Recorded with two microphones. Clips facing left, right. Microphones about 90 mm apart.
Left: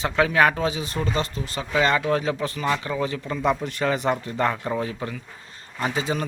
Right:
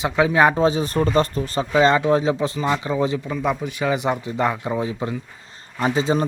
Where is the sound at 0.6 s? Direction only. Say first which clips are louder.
Right 7 dB; 40° right (ahead or behind).